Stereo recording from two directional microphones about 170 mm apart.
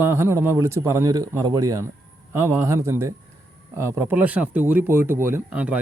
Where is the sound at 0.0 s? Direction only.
15° right (ahead or behind).